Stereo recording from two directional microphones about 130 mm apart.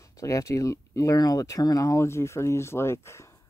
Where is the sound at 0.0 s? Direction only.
25° left (ahead or behind).